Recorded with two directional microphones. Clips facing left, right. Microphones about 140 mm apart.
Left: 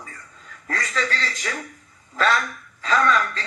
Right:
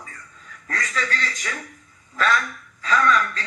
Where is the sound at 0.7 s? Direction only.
30° left (ahead or behind).